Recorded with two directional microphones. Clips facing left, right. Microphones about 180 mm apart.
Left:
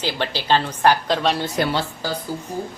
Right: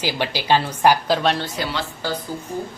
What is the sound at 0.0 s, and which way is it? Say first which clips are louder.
Speech: right 1 dB; 10° right (ahead or behind).